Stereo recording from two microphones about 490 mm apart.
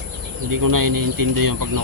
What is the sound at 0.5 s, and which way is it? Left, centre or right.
A man's voice, right.